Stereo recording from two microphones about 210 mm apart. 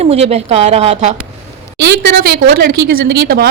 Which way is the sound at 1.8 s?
50° right (ahead or behind).